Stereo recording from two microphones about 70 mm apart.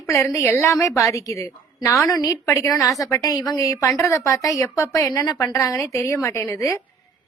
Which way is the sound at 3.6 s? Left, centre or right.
Left.